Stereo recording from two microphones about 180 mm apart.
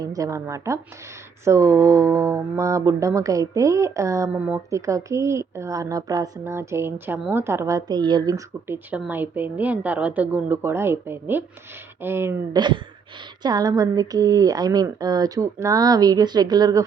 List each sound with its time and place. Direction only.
0.0 s speech: 20° right (ahead or behind)
12.5 s speech: 25° right (ahead or behind)